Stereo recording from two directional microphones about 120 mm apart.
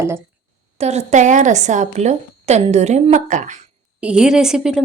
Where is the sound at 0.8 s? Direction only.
65° right (ahead or behind); by 3.6 s 90° right.